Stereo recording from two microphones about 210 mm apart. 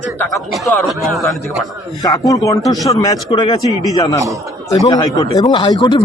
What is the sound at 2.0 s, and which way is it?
Speech, 15° left (ahead or behind).